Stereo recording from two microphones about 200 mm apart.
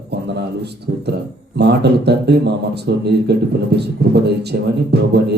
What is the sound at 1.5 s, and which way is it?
Speech, 55° right (ahead or behind).